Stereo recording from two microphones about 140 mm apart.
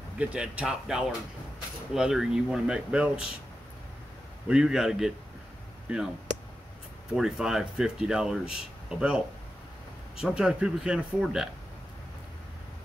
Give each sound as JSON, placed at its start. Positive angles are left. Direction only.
{"t": 0.2, "sound": "speech", "side_deg": -10}
{"t": 4.5, "sound": "speech", "side_deg": -5}
{"t": 7.1, "sound": "speech", "side_deg": -5}
{"t": 10.2, "sound": "speech", "side_deg": -5}